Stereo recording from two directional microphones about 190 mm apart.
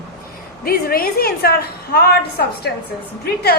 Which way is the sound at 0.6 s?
50° left (ahead or behind).